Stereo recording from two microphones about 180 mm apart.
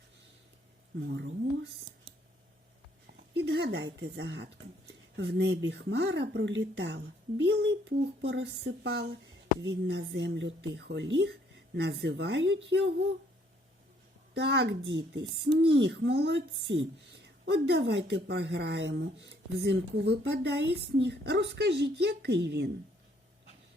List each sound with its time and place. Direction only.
1.1 s speech: 70° right (ahead or behind)
3.1 s a sound: 65° right (ahead or behind)
4.0 s a woman's voice: 70° right (ahead or behind)
14.3 s a woman's voice: 70° right (ahead or behind)